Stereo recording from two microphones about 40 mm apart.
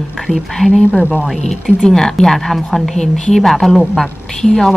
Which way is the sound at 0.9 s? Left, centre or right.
Right.